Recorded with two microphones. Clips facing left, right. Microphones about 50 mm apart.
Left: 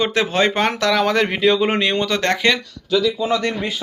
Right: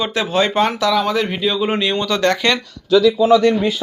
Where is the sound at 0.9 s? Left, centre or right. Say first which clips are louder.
Even; left.